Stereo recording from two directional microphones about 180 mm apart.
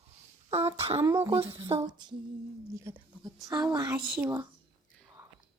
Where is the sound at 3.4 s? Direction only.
20° right (ahead or behind).